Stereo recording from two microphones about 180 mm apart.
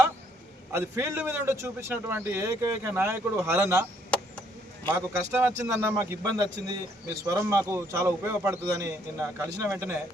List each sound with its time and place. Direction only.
0.7 s a man's voice: 15° right (ahead or behind)
4.9 s a man's voice: 15° right (ahead or behind)